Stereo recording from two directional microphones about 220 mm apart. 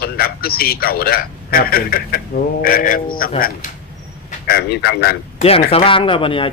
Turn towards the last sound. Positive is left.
turn(degrees=25)  # may be behind; listen again after turning